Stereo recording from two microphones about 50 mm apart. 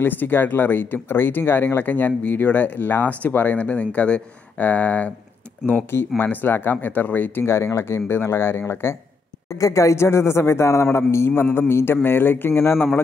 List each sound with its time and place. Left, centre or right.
0.0 s speech: left
5.7 s speech: left
7.4 s speech: left
9.8 s speech: left